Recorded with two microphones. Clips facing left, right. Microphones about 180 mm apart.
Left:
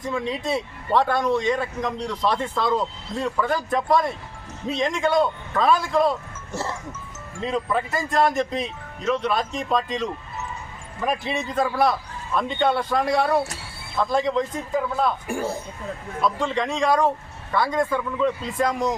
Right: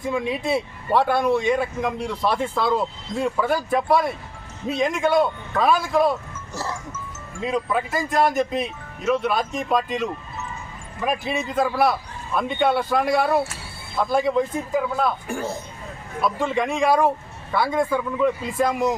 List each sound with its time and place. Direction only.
0.0 s a man's voice: 10° right (ahead or behind)
6.5 s speech: 25° left (ahead or behind)
7.4 s a man's voice: 5° right (ahead or behind)
15.3 s speech: 10° left (ahead or behind)
16.2 s a man's voice: 5° right (ahead or behind)